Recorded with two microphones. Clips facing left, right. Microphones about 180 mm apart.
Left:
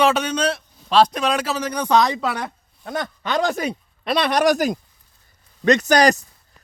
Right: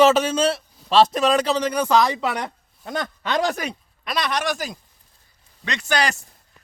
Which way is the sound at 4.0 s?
30° left (ahead or behind).